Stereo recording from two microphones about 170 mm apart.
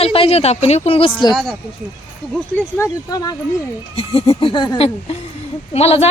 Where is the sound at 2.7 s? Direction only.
20° left (ahead or behind).